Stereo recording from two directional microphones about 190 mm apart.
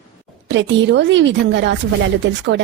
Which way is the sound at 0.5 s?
70° right (ahead or behind).